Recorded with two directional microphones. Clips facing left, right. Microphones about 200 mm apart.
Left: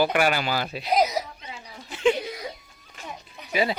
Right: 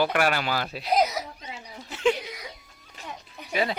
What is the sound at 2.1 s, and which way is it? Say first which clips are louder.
Music: left 6 dB; 35° left (ahead or behind).